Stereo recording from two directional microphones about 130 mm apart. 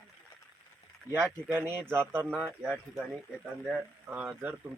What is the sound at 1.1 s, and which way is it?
Speech, 20° right (ahead or behind).